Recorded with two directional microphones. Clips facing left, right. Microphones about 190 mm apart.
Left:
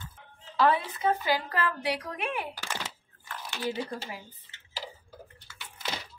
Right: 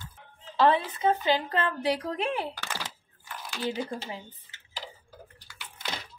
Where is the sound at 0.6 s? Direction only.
25° right (ahead or behind).